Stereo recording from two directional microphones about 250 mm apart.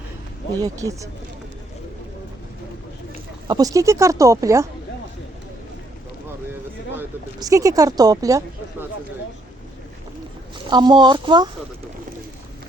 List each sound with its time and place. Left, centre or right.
0.6 s a woman's voice: centre
3.4 s a woman's voice: centre
6.9 s a woman's voice: centre
10.7 s a woman's voice: centre